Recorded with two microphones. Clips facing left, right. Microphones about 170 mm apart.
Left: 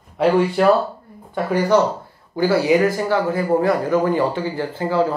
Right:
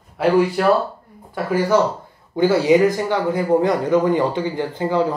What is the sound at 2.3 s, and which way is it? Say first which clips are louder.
A man's voice: right 2 dB; 20° right (ahead or behind).